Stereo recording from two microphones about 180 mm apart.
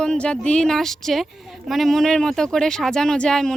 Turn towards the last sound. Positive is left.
turn(degrees=5)  # may be behind; listen again after turning